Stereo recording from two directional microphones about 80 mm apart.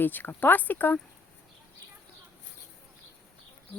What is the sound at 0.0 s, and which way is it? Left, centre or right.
Speech, left.